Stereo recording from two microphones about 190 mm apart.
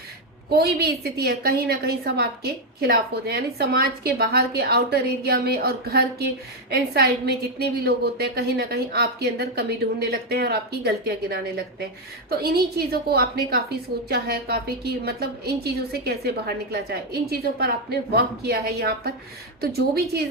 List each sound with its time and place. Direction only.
0.5 s a woman's voice: 55° right (ahead or behind)